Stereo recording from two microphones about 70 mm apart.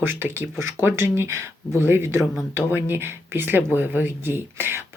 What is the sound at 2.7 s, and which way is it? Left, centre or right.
Speech, right.